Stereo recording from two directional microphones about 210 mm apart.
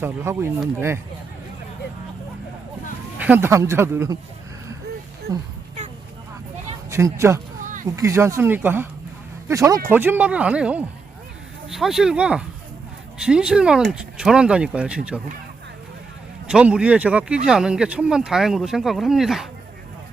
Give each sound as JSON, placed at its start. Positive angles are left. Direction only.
{"t": 0.0, "sound": "speech", "side_deg": -10}
{"t": 3.2, "sound": "speech", "side_deg": -10}
{"t": 5.3, "sound": "speech", "side_deg": -15}
{"t": 6.9, "sound": "speech", "side_deg": -15}
{"t": 16.5, "sound": "speech", "side_deg": -5}